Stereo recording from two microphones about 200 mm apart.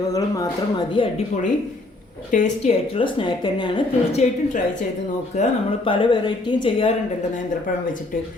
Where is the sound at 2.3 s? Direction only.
35° left (ahead or behind).